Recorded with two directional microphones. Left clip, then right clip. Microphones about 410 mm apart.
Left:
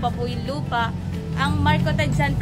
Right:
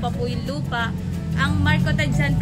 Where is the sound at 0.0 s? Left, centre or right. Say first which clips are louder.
Left 1 dB; centre.